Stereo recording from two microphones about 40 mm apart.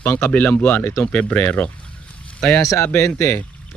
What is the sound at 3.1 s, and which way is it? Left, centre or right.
Speech, left.